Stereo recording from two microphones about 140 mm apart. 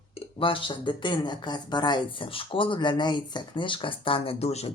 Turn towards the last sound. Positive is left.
turn(degrees=50)  # may be behind; listen again after turning